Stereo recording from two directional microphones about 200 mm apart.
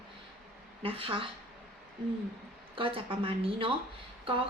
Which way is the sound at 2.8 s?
25° right (ahead or behind).